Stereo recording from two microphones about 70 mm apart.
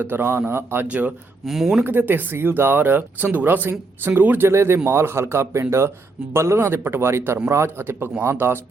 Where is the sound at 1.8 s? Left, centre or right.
Right.